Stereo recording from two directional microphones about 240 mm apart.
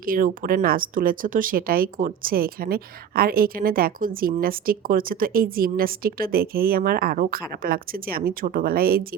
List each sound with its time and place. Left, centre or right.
0.0 s speech: right